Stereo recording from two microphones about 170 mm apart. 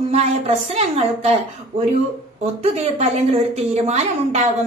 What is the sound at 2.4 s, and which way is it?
A woman's voice, 40° right (ahead or behind).